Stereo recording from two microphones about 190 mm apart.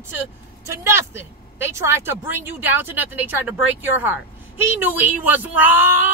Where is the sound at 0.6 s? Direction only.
15° right (ahead or behind).